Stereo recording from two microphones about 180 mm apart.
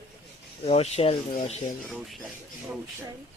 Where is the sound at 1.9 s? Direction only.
Centre (ahead or behind).